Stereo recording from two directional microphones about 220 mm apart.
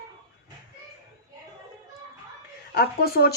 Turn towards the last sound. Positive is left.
turn(degrees=45)  # may be behind; listen again after turning